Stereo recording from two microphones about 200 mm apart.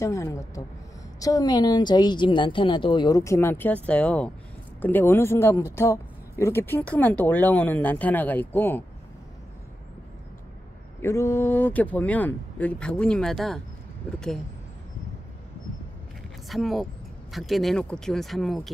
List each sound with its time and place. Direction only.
0.0 s a woman's voice: 15° left (ahead or behind)
11.0 s speech: 15° left (ahead or behind)
16.4 s speech: centre (ahead or behind)